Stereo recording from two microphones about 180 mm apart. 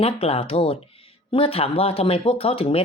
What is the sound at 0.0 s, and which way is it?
Speech, 35° left (ahead or behind).